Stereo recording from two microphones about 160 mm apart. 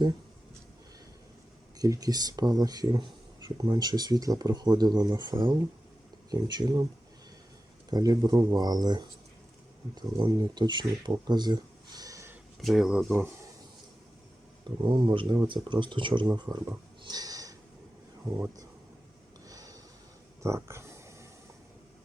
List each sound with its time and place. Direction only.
1.8 s speech: 20° right (ahead or behind)
7.9 s speech: 25° right (ahead or behind)
12.6 s speech: centre (ahead or behind)
14.8 s speech: 30° right (ahead or behind); by 18.6 s 15° right (ahead or behind)
19.5 s a sound: 20° right (ahead or behind)